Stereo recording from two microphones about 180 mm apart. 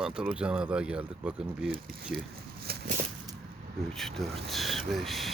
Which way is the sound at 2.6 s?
55° right (ahead or behind).